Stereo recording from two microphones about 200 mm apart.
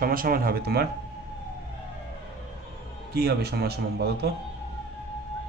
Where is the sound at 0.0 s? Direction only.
45° right (ahead or behind).